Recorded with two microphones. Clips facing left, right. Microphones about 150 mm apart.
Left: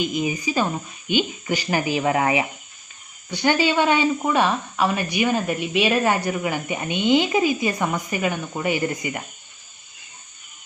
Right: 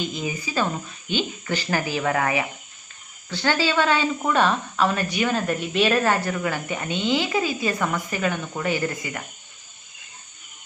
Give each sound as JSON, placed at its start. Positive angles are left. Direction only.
{"t": 0.0, "sound": "speech", "side_deg": 15}